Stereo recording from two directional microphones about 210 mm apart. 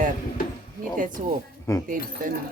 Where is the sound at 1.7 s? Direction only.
15° left (ahead or behind).